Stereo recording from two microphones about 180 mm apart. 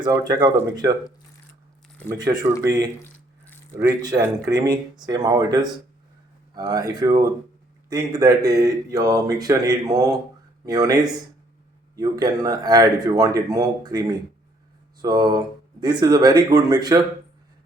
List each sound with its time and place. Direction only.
0.0 s speech: 20° right (ahead or behind)
2.0 s speech: 20° right (ahead or behind)
3.0 s a sound: 10° left (ahead or behind)
3.8 s speech: 20° right (ahead or behind)